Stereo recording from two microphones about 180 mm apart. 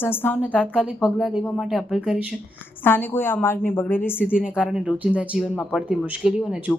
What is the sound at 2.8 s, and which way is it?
A woman's voice, 10° left (ahead or behind).